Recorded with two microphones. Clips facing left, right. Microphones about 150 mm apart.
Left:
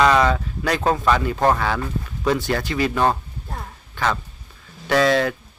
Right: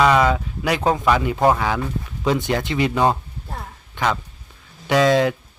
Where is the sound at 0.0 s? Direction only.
10° right (ahead or behind).